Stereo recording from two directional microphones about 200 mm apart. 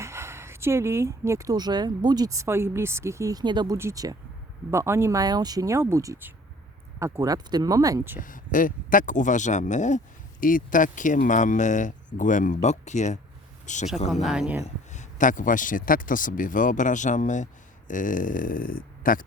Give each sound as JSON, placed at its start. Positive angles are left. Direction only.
{"t": 0.0, "sound": "speech", "side_deg": -15}
{"t": 8.2, "sound": "speech", "side_deg": 40}
{"t": 14.1, "sound": "speech", "side_deg": 0}
{"t": 14.6, "sound": "speech", "side_deg": 40}